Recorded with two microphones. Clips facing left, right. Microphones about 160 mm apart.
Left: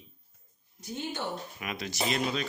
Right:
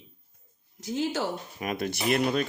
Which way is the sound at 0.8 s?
90° right.